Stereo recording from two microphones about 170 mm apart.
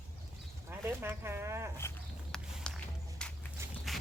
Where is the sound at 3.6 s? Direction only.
15° right (ahead or behind).